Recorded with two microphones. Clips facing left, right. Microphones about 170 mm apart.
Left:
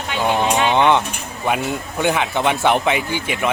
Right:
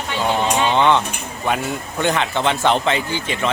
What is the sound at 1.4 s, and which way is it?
Speech, 15° left (ahead or behind).